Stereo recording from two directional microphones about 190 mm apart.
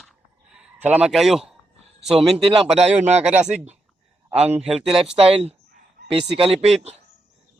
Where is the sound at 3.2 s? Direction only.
5° right (ahead or behind).